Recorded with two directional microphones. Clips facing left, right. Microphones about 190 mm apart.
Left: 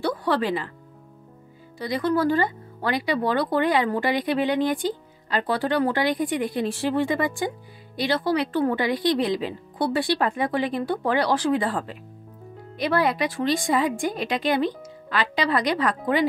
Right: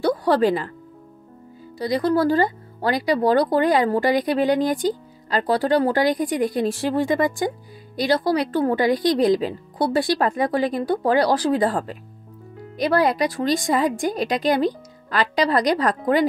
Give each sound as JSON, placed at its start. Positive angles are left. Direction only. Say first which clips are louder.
{"t": 0.0, "sound": "music", "louder": "right 6 dB", "side_deg": -40}
{"t": 1.8, "sound": "speech", "louder": "right 3 dB", "side_deg": -35}